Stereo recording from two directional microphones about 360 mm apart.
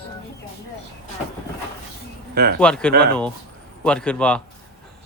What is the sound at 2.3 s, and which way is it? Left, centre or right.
Speech, right.